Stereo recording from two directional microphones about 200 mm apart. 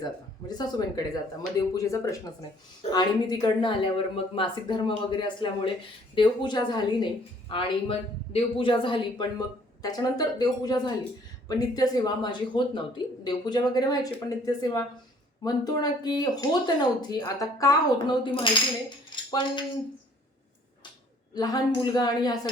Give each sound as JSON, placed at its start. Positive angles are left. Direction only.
{"t": 0.0, "sound": "speech", "side_deg": 20}
{"t": 19.1, "sound": "a sound", "side_deg": 25}
{"t": 21.3, "sound": "speech", "side_deg": 20}